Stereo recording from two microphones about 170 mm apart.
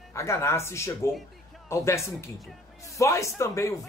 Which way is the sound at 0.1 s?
15° left (ahead or behind).